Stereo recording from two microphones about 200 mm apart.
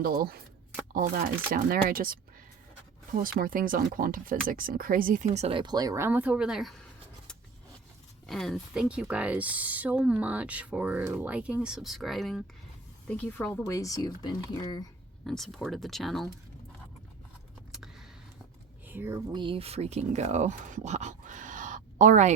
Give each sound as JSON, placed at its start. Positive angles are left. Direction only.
{"t": 0.0, "sound": "speech", "side_deg": -45}
{"t": 8.3, "sound": "speech", "side_deg": 0}
{"t": 15.3, "sound": "speech", "side_deg": 0}
{"t": 18.9, "sound": "speech", "side_deg": -10}
{"t": 19.3, "sound": "speech", "side_deg": -25}